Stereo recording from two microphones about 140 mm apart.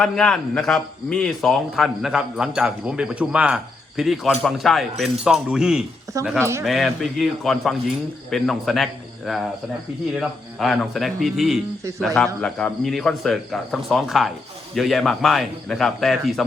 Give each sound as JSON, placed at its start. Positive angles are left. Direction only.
{"t": 0.0, "sound": "speech", "side_deg": 5}
{"t": 6.4, "sound": "speech", "side_deg": -20}
{"t": 6.7, "sound": "a man's voice", "side_deg": 0}